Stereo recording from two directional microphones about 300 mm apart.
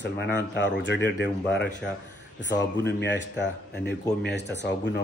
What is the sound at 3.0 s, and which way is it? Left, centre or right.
Speech, left.